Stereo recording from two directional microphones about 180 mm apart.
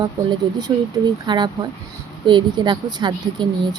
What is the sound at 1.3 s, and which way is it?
Speech, 25° right (ahead or behind).